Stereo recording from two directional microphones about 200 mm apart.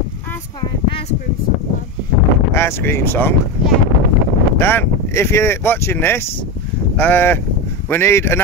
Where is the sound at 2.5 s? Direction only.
10° left (ahead or behind).